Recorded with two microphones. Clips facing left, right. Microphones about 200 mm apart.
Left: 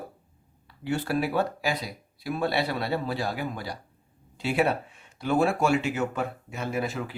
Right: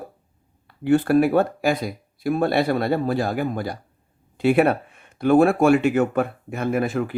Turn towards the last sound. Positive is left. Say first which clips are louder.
# right 8 dB
turn(degrees=-55)  # may be behind; listen again after turning